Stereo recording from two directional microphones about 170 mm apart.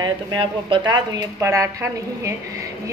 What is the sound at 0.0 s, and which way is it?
A woman's voice, 25° right (ahead or behind).